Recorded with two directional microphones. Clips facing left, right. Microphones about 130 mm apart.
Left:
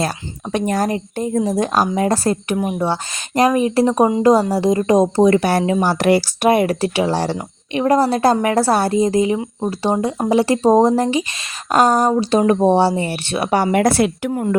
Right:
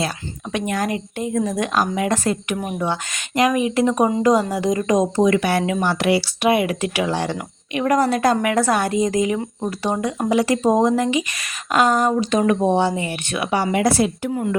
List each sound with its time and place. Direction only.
0.5 s speech: 35° left (ahead or behind); by 14.4 s 65° left (ahead or behind)